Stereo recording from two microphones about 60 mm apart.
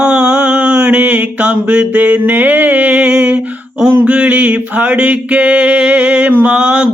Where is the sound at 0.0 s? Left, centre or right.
Centre.